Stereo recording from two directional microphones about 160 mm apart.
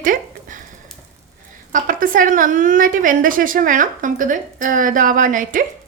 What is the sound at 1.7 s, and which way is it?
A woman's voice, 60° right (ahead or behind).